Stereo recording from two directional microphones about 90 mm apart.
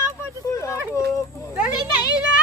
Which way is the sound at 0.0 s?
35° left (ahead or behind).